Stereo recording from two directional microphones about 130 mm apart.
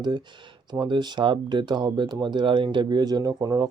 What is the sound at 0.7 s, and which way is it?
Speech, 35° right (ahead or behind).